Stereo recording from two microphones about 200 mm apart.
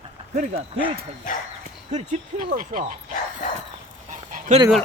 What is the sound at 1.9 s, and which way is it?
Speech, 35° right (ahead or behind).